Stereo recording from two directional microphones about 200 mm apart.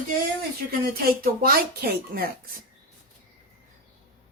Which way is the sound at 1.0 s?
45° right (ahead or behind).